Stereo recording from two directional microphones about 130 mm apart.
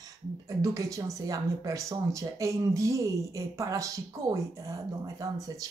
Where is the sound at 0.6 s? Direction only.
25° right (ahead or behind).